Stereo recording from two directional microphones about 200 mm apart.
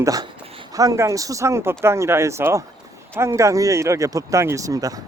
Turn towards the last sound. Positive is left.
turn(degrees=-15)  # may be behind; listen again after turning